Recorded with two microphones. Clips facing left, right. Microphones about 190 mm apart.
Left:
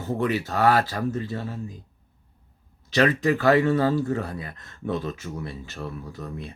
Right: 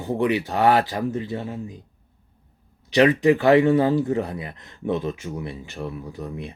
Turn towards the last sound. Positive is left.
turn(degrees=-15)  # may be behind; listen again after turning